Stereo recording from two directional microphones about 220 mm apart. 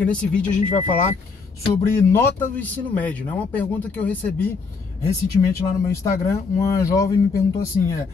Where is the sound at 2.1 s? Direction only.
10° left (ahead or behind).